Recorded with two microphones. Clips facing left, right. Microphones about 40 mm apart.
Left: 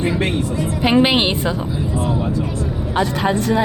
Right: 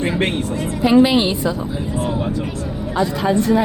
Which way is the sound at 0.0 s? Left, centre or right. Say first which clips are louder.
Even; right.